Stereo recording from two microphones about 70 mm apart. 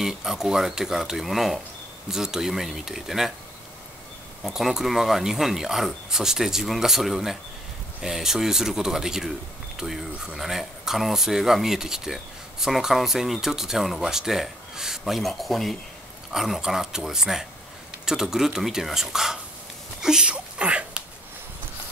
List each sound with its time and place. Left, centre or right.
0.0 s speech: centre
4.5 s speech: centre
20.0 s a sound: centre